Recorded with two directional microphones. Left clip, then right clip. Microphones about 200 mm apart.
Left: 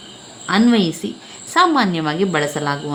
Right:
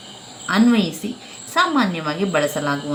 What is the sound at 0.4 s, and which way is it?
A woman's voice, 50° left (ahead or behind).